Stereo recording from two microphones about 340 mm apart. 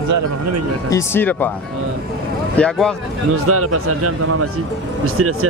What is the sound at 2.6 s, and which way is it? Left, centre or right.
Speech, centre.